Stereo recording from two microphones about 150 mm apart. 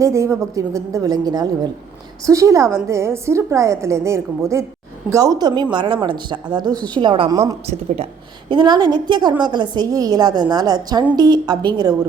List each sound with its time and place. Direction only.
0.0 s a woman's voice: 20° right (ahead or behind)
8.4 s a woman's voice: 30° right (ahead or behind)